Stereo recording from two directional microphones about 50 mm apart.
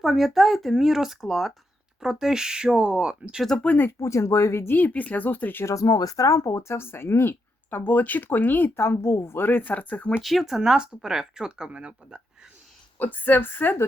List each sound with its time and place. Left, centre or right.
0.0 s speech: centre
3.6 s speech: left
4.0 s speech: left
4.6 s speech: left
6.2 s a woman's voice: left
7.9 s speech: left
10.2 s speech: centre; by 12.2 s right
13.0 s speech: left